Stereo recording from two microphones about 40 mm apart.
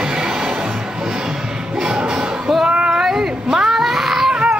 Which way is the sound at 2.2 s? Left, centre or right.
Centre.